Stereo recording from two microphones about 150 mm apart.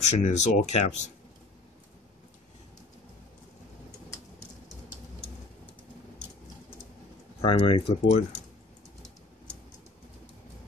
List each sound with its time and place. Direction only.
0.0 s speech: 50° left (ahead or behind)
7.4 s speech: 40° left (ahead or behind)